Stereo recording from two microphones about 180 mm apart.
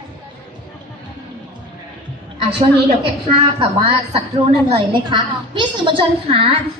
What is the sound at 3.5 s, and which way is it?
A woman's voice, 30° right (ahead or behind).